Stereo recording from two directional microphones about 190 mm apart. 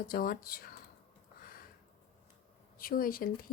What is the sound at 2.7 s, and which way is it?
Speech, 50° left (ahead or behind).